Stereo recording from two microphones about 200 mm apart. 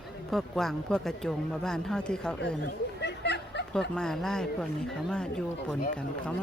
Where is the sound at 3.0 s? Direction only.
60° left (ahead or behind).